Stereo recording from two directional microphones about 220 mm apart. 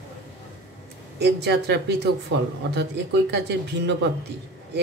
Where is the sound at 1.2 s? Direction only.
50° right (ahead or behind).